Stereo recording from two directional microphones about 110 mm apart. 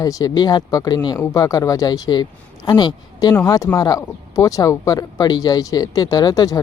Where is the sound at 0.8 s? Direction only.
30° left (ahead or behind).